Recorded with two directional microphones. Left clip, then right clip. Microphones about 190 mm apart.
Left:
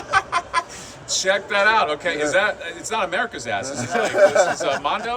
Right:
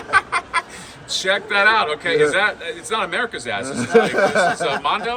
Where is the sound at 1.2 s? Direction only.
10° left (ahead or behind).